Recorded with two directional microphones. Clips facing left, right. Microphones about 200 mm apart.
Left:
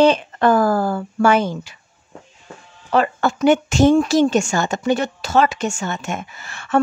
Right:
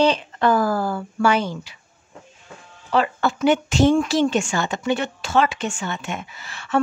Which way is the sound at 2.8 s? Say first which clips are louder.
Left 3 dB; 45° left (ahead or behind).